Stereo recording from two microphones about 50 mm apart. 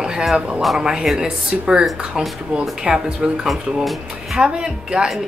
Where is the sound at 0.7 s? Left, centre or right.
Centre.